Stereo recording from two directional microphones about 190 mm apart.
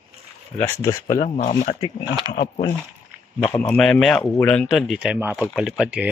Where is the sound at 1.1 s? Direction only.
40° left (ahead or behind).